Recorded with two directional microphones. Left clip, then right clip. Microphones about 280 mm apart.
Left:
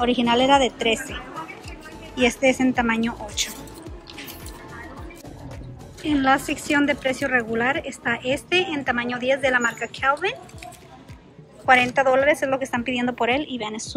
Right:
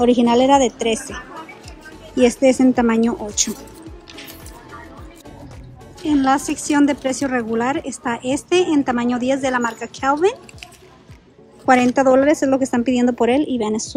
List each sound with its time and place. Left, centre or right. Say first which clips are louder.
0.0 s a woman's voice: right 5 dB; centre
6.0 s a woman's voice: right 3 dB; centre
11.6 s a woman's voice: right 3 dB; centre